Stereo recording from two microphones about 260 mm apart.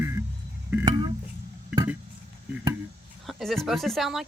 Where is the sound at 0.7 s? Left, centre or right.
Centre.